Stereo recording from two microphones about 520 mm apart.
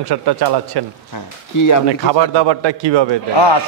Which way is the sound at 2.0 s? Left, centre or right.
Right.